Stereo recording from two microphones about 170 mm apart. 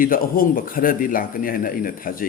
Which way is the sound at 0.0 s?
55° left (ahead or behind).